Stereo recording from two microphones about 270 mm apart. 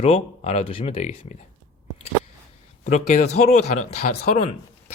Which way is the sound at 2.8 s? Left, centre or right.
Left.